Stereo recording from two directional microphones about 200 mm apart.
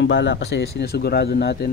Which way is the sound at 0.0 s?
65° left (ahead or behind).